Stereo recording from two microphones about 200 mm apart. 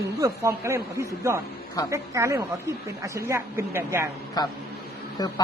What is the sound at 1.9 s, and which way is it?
A woman's voice, 15° right (ahead or behind).